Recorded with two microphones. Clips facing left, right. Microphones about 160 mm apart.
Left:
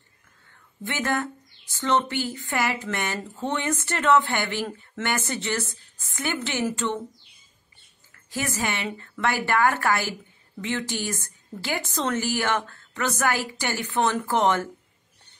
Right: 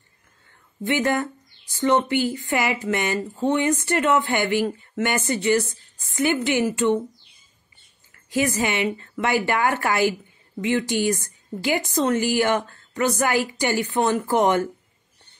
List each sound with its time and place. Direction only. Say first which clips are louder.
0.8 s a woman's voice: right 5 dB; 15° right (ahead or behind)
8.3 s a woman's voice: right 6 dB; 15° right (ahead or behind)